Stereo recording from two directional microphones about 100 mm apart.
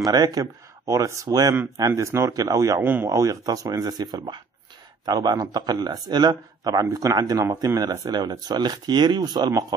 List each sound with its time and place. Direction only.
0.0 s speech: 40° right (ahead or behind)
2.8 s speech: 20° right (ahead or behind)
3.1 s speech: 35° right (ahead or behind)